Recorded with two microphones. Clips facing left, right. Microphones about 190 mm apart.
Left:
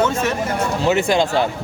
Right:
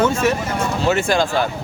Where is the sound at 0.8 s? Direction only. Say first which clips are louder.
Left 1 dB; 20° left (ahead or behind).